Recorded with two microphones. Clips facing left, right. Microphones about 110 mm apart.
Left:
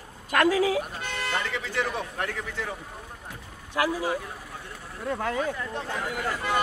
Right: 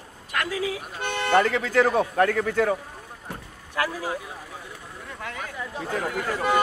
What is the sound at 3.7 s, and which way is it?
Speech, 15° left (ahead or behind).